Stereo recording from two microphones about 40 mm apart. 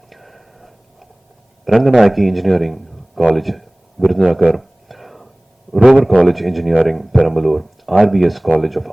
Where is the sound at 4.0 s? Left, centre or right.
Right.